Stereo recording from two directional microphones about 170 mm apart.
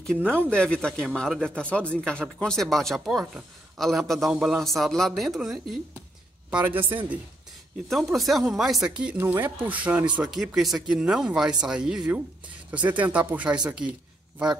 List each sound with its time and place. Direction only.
0.2 s speech: 10° right (ahead or behind)
0.5 s a man's voice: 5° left (ahead or behind); by 7.2 s 10° right (ahead or behind)
7.9 s a man's voice: centre (ahead or behind)